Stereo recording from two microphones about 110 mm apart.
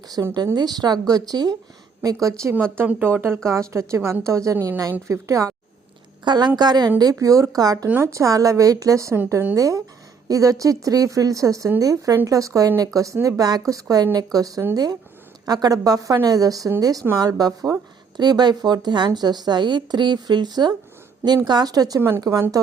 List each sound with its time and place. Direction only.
0.1 s speech: 30° right (ahead or behind)
0.5 s a woman's voice: 35° right (ahead or behind)
2.2 s a woman's voice: 25° right (ahead or behind)